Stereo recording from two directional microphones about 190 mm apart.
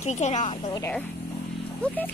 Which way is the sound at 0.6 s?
20° left (ahead or behind).